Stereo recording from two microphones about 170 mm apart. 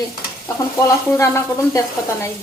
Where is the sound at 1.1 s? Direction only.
15° left (ahead or behind).